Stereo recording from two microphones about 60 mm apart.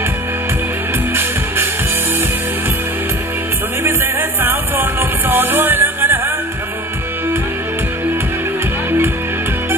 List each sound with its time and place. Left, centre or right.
3.8 s music: right